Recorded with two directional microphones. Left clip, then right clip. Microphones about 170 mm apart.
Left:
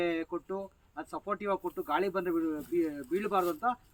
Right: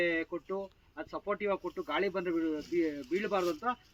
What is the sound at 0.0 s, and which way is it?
Speech, 15° left (ahead or behind).